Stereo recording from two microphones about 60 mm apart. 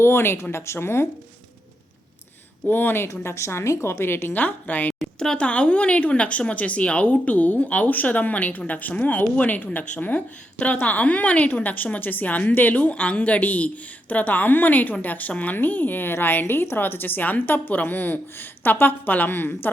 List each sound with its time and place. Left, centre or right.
0.0 s a woman's voice: left
2.6 s a woman's voice: left
3.1 s a woman's voice: left
4.9 s a woman's voice: centre; by 19.7 s left